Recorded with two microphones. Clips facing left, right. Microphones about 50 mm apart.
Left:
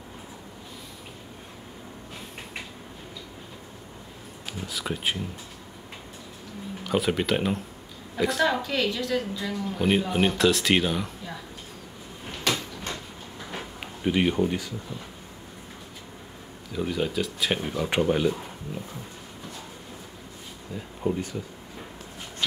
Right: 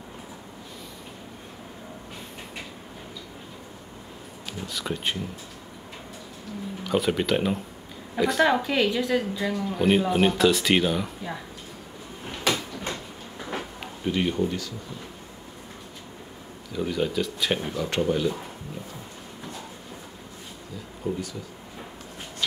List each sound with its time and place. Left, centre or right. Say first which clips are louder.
4.6 s speech: even; centre
6.8 s speech: right 1 dB; centre
8.5 s a woman's voice: right 3 dB; centre
9.8 s speech: right 2 dB; centre
12.3 s cupboard open or close: right 2 dB; centre
14.0 s speech: left 2 dB; centre
16.7 s speech: right 1 dB; centre
17.8 s speech: left 2 dB; centre
21.0 s speech: left 2 dB; left